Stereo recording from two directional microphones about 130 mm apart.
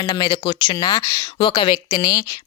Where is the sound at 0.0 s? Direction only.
30° left (ahead or behind).